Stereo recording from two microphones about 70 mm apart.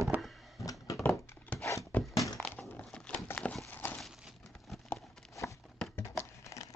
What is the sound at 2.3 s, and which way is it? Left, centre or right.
Crushing, centre.